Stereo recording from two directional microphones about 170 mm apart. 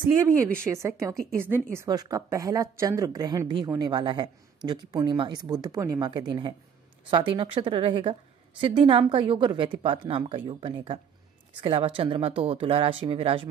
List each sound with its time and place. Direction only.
0.7 s a woman's voice: 15° right (ahead or behind); by 13.5 s 30° right (ahead or behind)